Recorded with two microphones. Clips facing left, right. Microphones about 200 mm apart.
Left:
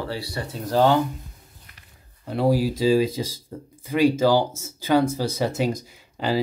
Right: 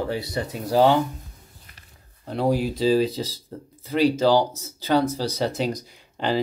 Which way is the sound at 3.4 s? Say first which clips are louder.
Left 1 dB; 15° left (ahead or behind).